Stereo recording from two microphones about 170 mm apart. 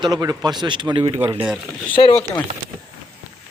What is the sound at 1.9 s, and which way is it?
Speech, 30° left (ahead or behind).